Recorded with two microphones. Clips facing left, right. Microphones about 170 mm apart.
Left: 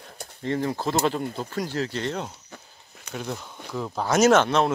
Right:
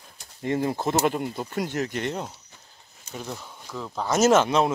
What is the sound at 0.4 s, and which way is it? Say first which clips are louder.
Speech: right 1 dB; 15° right (ahead or behind).